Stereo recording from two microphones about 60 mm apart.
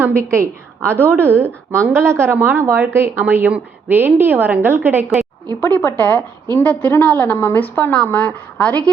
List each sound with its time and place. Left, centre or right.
0.0 s a woman's voice: right
5.5 s a woman's voice: left